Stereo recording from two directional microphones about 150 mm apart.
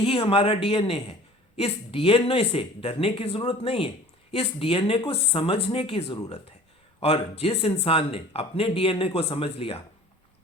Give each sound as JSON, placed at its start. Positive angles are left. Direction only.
{"t": 0.0, "sound": "speech", "side_deg": 35}